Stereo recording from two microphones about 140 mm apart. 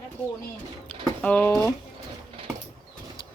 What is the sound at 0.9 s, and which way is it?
Speech, 10° left (ahead or behind).